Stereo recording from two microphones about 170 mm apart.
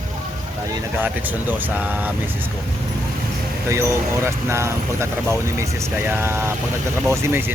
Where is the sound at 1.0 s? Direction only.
10° right (ahead or behind).